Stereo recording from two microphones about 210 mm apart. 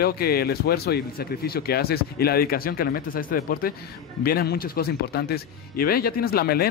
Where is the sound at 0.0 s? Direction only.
50° left (ahead or behind).